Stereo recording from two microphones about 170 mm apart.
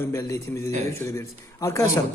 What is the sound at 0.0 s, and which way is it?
A man's voice, 20° left (ahead or behind).